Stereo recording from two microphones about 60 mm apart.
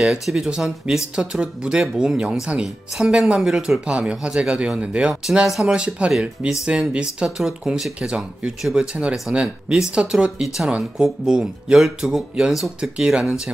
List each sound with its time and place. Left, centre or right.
0.0 s speech: centre
3.8 s speech: centre
5.8 s speech: centre
7.2 s speech: centre
12.9 s speech: centre